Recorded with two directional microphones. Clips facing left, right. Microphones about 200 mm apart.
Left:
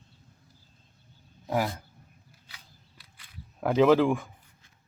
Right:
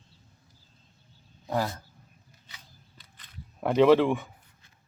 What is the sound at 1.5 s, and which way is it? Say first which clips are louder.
Speech: left 1 dB; 15° left (ahead or behind).